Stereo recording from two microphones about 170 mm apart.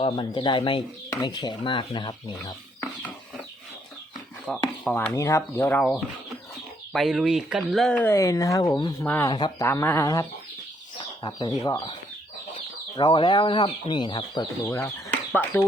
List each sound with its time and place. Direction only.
0.0 s speech: 30° left (ahead or behind)
4.5 s speech: centre (ahead or behind); by 9.0 s 25° left (ahead or behind)
9.0 s speech: 10° left (ahead or behind)
9.3 s speech: 25° left (ahead or behind)
9.6 s speech: 15° left (ahead or behind)
14.6 s speech: 10° left (ahead or behind)